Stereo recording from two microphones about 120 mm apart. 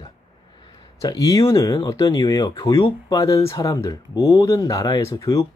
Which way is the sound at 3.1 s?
25° left (ahead or behind).